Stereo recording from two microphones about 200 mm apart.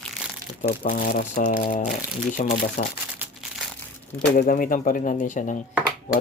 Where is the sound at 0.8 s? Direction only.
40° left (ahead or behind).